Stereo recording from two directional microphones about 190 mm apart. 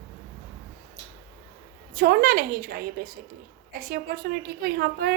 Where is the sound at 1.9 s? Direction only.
50° right (ahead or behind).